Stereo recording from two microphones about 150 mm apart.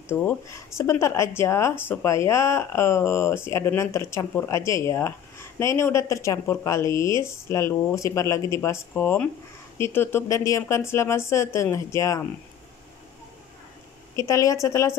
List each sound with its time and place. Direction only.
0.1 s speech: 15° left (ahead or behind)
14.1 s speech: 20° left (ahead or behind)